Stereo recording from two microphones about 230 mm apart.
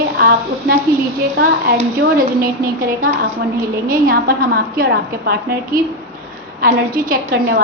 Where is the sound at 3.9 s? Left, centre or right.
Right.